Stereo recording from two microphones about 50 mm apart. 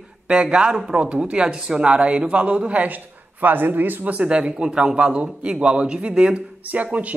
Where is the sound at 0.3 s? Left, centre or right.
Centre.